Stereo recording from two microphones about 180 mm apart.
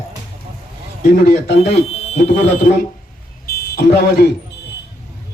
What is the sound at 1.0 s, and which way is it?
Speech, 55° left (ahead or behind).